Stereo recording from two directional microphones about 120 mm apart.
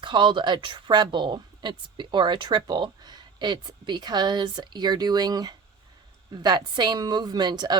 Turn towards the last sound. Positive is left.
turn(degrees=-35)  # may be behind; listen again after turning